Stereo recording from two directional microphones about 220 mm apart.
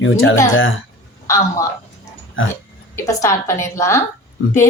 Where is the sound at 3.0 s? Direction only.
15° left (ahead or behind).